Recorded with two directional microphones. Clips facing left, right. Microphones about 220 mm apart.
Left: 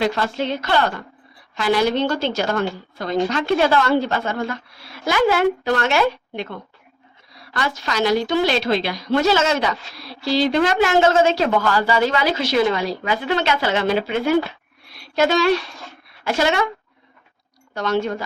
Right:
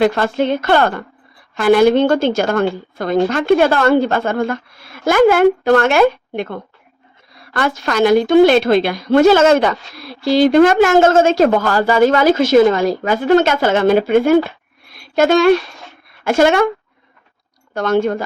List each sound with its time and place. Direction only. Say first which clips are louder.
0.0 s a woman's voice: right 7 dB; 55° right (ahead or behind)
14.9 s a sound: right 6 dB; 50° right (ahead or behind)
16.2 s a woman's voice: right 7 dB; 50° right (ahead or behind)
17.7 s a woman's voice: right 6 dB; 50° right (ahead or behind)